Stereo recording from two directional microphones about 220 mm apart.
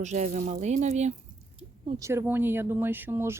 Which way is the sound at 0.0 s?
30° right (ahead or behind).